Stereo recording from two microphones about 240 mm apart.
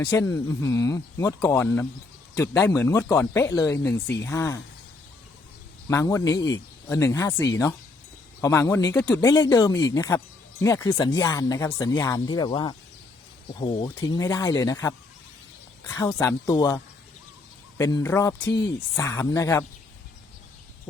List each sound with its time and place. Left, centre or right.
0.0 s speech: centre
5.9 s speech: centre